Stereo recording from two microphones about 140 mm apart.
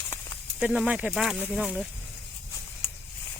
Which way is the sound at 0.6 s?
5° right (ahead or behind).